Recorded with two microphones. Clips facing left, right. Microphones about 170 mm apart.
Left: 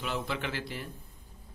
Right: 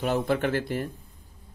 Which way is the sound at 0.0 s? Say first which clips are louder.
Right 9 dB; 50° right (ahead or behind).